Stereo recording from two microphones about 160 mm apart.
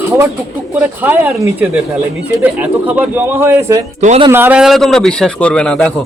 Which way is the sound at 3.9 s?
50° right (ahead or behind).